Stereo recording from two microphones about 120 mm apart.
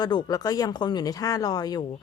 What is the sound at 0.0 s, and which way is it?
Speech, 35° left (ahead or behind).